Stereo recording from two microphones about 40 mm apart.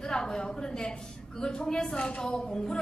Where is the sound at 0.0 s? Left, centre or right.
Centre.